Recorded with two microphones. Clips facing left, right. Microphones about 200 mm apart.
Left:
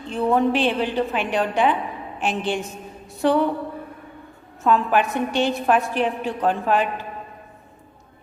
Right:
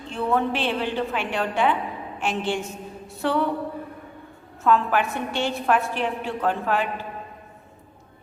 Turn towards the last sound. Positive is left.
turn(degrees=20)  # may be behind; listen again after turning